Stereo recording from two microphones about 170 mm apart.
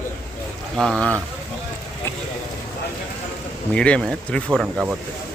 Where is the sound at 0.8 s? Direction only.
5° left (ahead or behind).